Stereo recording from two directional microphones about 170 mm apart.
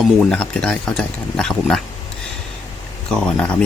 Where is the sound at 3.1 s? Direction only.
5° left (ahead or behind).